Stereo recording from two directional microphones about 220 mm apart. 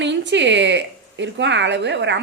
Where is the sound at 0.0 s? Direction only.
55° right (ahead or behind).